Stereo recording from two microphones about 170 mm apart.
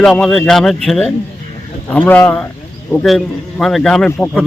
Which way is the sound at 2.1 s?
10° left (ahead or behind).